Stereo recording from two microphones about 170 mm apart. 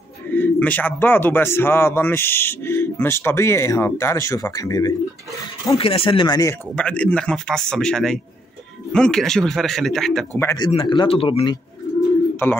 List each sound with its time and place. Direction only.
0.3 s a man's voice: 10° left (ahead or behind)
5.8 s speech: 35° left (ahead or behind)
6.7 s speech: 5° left (ahead or behind)
10.3 s a man's voice: 15° left (ahead or behind)
10.6 s speech: 30° left (ahead or behind)
12.4 s a man's voice: 15° left (ahead or behind)